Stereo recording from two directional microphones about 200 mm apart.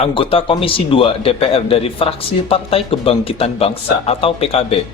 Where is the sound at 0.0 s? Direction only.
25° left (ahead or behind).